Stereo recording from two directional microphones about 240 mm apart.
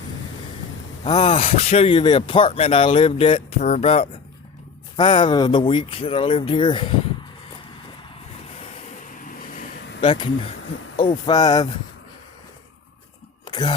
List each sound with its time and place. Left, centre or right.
1.0 s speech: left
9.2 s vehicle: left
10.0 s speech: left
13.4 s throat clearing: centre